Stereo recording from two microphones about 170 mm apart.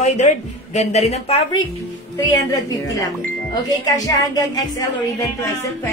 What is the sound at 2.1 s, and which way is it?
Speech, 20° left (ahead or behind).